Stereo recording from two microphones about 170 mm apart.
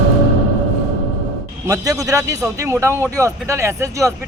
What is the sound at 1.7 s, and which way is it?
Speech, 20° right (ahead or behind).